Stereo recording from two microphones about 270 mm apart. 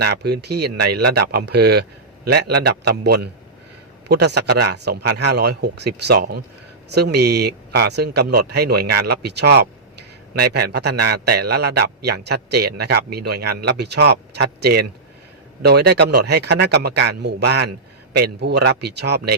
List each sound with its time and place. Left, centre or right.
0.0 s a man's voice: right